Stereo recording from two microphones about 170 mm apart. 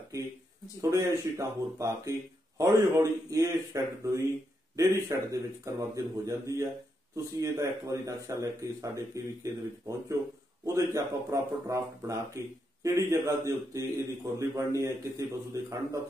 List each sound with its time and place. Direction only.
0.7 s speech: 20° right (ahead or behind)